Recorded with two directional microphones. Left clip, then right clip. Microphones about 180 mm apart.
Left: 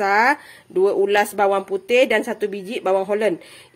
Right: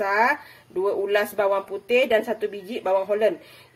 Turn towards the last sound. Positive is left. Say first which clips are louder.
# left 2 dB
turn(degrees=50)  # may be behind; listen again after turning